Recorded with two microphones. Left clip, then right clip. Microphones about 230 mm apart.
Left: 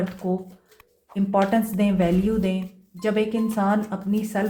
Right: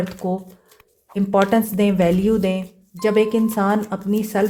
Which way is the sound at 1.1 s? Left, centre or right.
Right.